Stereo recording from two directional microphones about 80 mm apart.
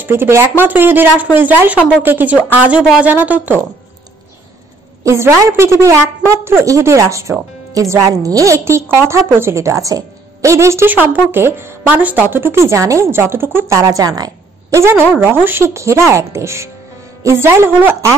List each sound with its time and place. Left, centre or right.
0.0 s speech: right
5.0 s speech: right
10.9 s speech: right
11.9 s speech: centre
13.7 s a woman's voice: right
15.1 s speech: right